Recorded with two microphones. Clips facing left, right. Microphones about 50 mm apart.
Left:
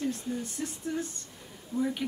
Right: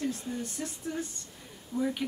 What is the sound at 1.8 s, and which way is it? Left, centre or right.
Speech, centre.